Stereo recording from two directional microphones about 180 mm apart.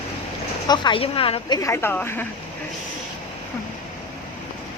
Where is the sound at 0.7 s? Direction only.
30° left (ahead or behind).